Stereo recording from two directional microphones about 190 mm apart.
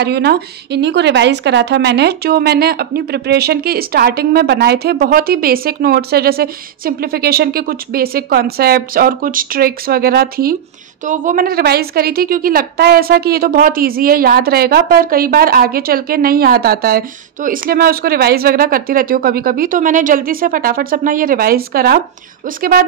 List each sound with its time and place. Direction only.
0.0 s a woman's voice: 60° right (ahead or behind)